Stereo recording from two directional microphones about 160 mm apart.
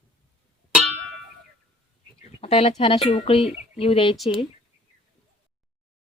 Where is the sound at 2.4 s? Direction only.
40° left (ahead or behind).